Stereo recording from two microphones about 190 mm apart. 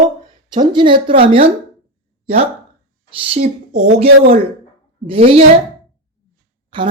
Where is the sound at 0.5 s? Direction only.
25° right (ahead or behind).